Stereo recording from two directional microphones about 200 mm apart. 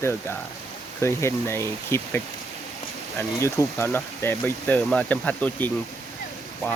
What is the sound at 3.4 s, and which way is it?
Speech, 15° left (ahead or behind).